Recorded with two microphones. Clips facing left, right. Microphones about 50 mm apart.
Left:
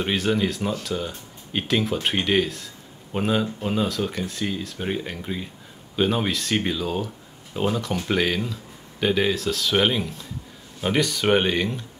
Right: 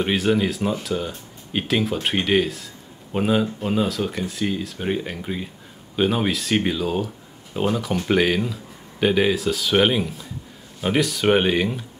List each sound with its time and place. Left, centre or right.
0.0 s speech: centre